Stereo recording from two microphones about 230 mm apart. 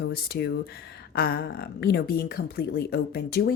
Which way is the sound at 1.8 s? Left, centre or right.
Left.